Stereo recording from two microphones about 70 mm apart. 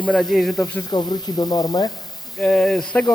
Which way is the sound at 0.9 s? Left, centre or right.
Left.